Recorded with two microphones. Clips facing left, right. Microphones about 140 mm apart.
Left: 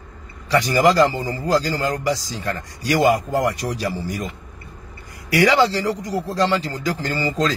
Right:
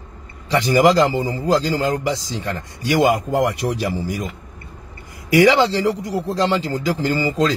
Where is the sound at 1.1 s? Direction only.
25° right (ahead or behind).